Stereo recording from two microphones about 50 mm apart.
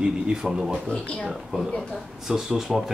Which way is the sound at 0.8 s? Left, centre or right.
Centre.